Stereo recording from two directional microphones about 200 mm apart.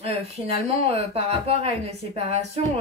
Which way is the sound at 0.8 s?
30° right (ahead or behind).